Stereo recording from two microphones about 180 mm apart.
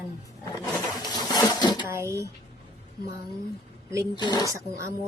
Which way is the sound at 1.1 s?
20° left (ahead or behind).